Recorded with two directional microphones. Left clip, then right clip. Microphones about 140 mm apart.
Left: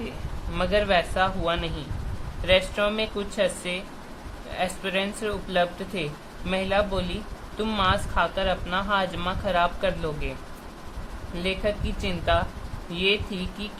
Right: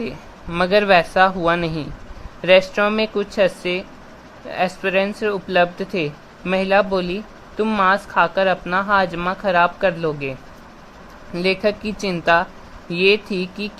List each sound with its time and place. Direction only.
0.5 s speech: 80° right
4.5 s speech: 75° right (ahead or behind); by 7.0 s 90° right
7.6 s speech: 60° right (ahead or behind); by 9.0 s 80° right
9.1 s speech: 60° right (ahead or behind); by 10.3 s 85° right
11.4 s speech: 85° right